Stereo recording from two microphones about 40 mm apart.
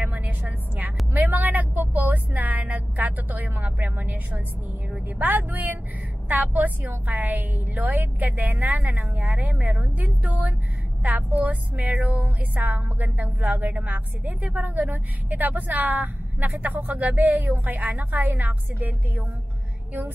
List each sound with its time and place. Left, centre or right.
0.0 s vehicle: right
5.2 s music: right
11.9 s music: right
12.2 s music: right